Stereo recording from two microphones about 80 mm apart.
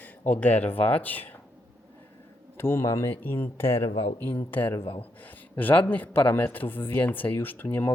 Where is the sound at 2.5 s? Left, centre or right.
Left.